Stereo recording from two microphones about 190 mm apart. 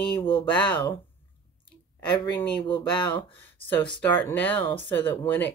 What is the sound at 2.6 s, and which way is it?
Speech, 25° left (ahead or behind).